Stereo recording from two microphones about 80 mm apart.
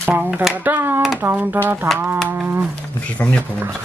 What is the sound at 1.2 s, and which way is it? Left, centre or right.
Speech, right.